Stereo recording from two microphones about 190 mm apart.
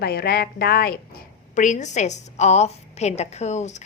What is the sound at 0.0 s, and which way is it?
Speech, 55° left (ahead or behind).